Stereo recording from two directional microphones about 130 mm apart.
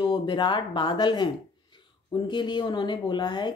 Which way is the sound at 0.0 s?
40° left (ahead or behind).